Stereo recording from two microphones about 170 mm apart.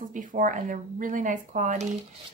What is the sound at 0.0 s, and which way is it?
A woman's voice, 50° right (ahead or behind).